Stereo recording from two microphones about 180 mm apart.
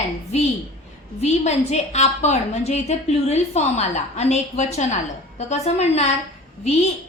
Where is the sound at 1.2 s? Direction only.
40° left (ahead or behind).